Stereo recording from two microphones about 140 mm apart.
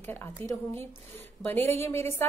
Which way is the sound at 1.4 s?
15° left (ahead or behind).